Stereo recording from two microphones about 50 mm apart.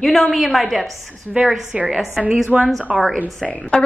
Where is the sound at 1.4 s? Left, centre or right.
Right.